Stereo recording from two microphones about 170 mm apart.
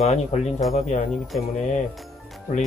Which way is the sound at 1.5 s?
45° left (ahead or behind).